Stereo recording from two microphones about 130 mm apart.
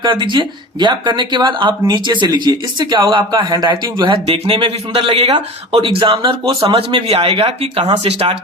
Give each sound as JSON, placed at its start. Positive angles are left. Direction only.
{"t": 0.0, "sound": "speech", "side_deg": -35}